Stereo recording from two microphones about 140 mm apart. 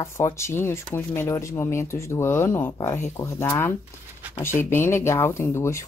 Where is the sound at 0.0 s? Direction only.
20° left (ahead or behind).